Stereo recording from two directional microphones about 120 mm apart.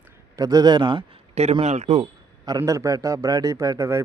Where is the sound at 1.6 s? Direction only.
70° right (ahead or behind).